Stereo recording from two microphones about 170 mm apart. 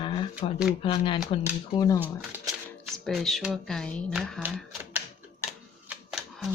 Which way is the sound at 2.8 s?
Centre (ahead or behind).